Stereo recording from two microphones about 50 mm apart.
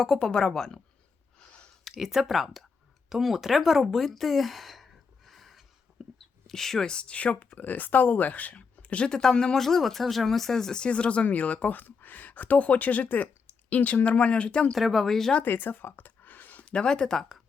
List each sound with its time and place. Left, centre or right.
0.0 s a woman's voice: centre
1.5 s a sound: left
2.0 s speech: centre; by 7.6 s left
7.6 s speech: left; by 14.8 s centre
14.8 s speech: centre
15.0 s a woman's voice: centre
15.4 s a sound: left
16.7 s a woman's voice: centre